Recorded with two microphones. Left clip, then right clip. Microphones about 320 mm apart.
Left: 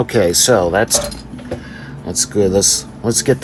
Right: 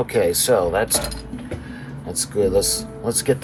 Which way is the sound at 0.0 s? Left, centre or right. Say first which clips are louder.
Left 5 dB; left.